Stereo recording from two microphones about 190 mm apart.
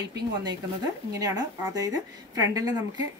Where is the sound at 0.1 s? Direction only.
20° right (ahead or behind).